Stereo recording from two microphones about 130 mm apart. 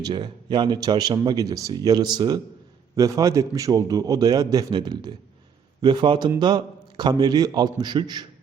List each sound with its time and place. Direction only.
0.0 s a man's voice: 35° right (ahead or behind)